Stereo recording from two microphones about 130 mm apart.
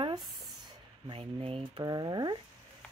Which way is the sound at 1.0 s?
45° right (ahead or behind).